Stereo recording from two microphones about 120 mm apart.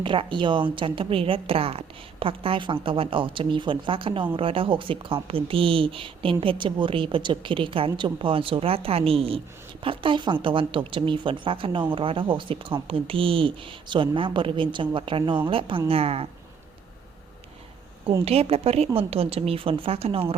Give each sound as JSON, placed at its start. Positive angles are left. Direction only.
{"t": 0.0, "sound": "speech", "side_deg": -45}
{"t": 18.3, "sound": "a woman's voice", "side_deg": -55}